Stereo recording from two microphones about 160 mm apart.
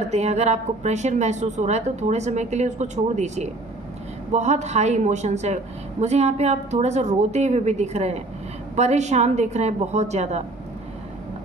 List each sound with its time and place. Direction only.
0.1 s speech: 45° right (ahead or behind)